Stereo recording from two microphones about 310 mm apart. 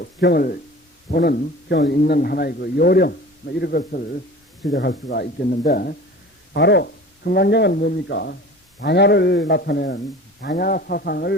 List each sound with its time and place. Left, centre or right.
0.0 s a man's voice: left